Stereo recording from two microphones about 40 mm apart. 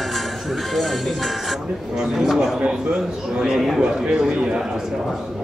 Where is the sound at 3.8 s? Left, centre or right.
Right.